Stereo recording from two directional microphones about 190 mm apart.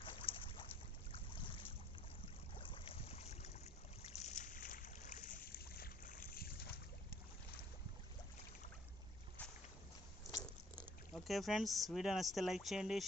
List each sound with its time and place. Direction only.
0.0 s boat: 25° left (ahead or behind); by 6.7 s 50° left (ahead or behind)
9.4 s boat: 10° left (ahead or behind)
10.4 s speech: 5° left (ahead or behind)